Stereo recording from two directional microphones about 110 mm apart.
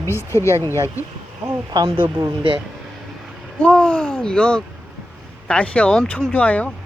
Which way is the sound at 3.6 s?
10° left (ahead or behind).